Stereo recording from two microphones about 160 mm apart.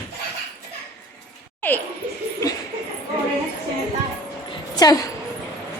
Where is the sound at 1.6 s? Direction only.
10° left (ahead or behind).